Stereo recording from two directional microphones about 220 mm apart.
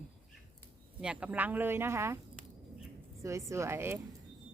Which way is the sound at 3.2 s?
15° right (ahead or behind).